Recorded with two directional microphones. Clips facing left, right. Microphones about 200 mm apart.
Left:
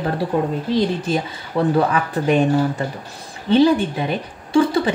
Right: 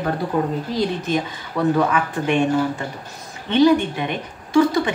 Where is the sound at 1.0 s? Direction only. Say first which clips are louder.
Left 1 dB; 30° left (ahead or behind).